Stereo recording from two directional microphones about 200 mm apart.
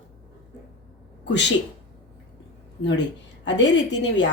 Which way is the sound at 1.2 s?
60° left (ahead or behind).